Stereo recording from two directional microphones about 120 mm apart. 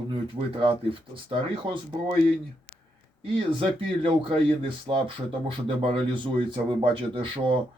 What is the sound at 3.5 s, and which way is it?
Speech, 50° right (ahead or behind).